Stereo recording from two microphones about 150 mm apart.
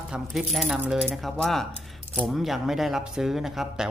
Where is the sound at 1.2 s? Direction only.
Centre (ahead or behind).